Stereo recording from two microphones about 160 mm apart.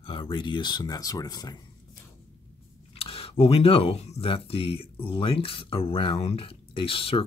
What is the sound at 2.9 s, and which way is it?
Speech, 35° left (ahead or behind).